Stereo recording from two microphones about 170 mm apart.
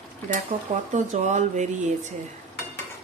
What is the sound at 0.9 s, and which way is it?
Speech, 45° right (ahead or behind).